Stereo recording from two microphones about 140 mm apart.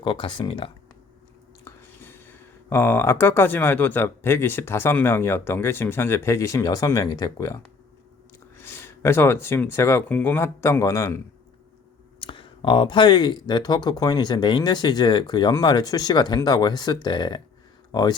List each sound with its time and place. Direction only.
0.0 s speech: 35° left (ahead or behind)
1.6 s speech: 15° left (ahead or behind)
12.2 s speech: 35° left (ahead or behind)